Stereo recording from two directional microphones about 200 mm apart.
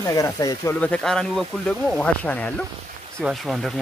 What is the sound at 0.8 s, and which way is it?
Speech, 5° left (ahead or behind).